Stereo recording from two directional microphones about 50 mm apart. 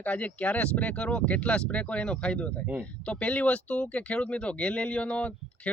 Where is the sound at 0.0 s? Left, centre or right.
Left.